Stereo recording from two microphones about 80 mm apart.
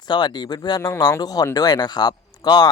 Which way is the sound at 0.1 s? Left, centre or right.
Left.